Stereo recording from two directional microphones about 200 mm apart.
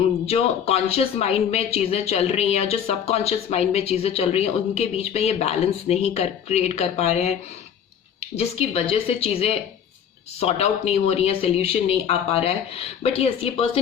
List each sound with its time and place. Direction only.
0.3 s speech: 30° left (ahead or behind)